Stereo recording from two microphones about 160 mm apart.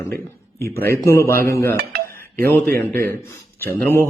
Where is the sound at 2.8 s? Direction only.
70° right (ahead or behind).